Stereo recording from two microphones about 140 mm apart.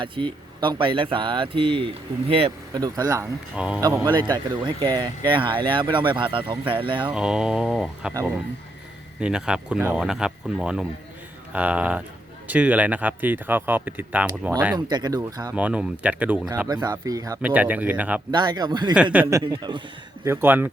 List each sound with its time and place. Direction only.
0.0 s speech: 35° right (ahead or behind)
2.7 s speech: 30° right (ahead or behind)
3.5 s speech: 5° right (ahead or behind)
4.0 s speech: 30° right (ahead or behind)
7.1 s speech: 5° right (ahead or behind)
9.2 s speech: 5° right (ahead or behind)
14.8 s speech: 30° right (ahead or behind)
15.5 s speech: 10° right (ahead or behind)
16.6 s speech: 30° right (ahead or behind)
17.4 s speech: 10° right (ahead or behind)
18.3 s speech: 30° right (ahead or behind)
19.1 s speech: 15° right (ahead or behind)
19.4 s speech: 30° right (ahead or behind)
20.2 s speech: 15° right (ahead or behind)